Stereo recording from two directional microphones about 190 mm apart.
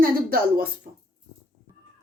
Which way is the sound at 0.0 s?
50° right (ahead or behind).